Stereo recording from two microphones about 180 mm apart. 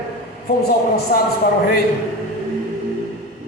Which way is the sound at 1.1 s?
55° left (ahead or behind).